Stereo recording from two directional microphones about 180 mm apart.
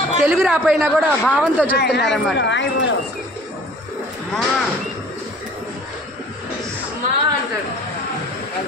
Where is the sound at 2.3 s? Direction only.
85° left.